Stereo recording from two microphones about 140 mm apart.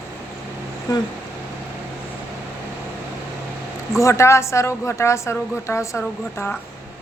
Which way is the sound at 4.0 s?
20° left (ahead or behind).